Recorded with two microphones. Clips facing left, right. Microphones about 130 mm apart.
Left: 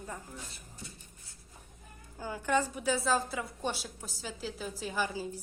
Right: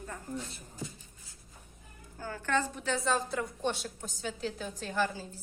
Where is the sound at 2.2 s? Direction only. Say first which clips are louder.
Left 1 dB; 15° left (ahead or behind).